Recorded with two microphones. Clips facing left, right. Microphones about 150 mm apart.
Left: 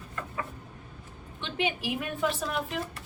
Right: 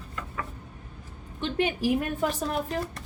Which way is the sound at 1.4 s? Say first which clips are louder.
Right 5 dB; 45° right (ahead or behind).